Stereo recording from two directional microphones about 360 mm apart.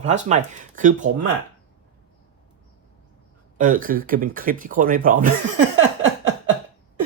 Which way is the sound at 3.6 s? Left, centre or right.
Right.